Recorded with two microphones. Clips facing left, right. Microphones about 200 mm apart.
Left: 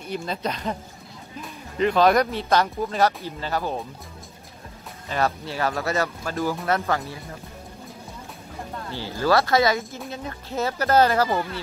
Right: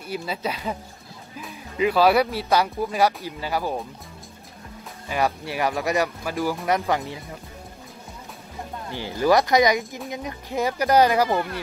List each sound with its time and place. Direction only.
0.1 s speech: 5° right (ahead or behind)
5.0 s speech: 10° right (ahead or behind)
8.9 s speech: 15° right (ahead or behind)